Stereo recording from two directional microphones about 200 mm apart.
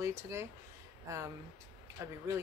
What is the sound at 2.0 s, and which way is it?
Speech, 15° right (ahead or behind).